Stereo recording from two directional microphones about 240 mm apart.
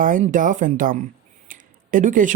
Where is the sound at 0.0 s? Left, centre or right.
Right.